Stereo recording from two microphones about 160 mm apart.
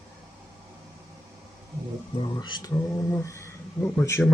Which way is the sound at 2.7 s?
15° left (ahead or behind).